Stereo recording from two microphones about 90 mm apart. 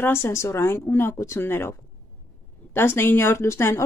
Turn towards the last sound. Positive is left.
turn(degrees=30)  # may be behind; listen again after turning